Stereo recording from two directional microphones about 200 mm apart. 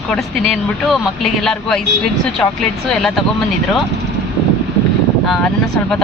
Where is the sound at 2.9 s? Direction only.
Centre (ahead or behind).